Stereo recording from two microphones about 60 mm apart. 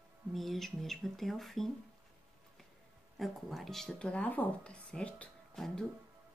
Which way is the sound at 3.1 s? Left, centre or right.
Centre.